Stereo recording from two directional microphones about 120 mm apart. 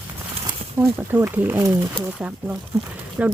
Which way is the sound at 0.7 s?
20° right (ahead or behind).